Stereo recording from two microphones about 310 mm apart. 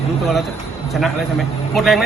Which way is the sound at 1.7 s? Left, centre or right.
Centre.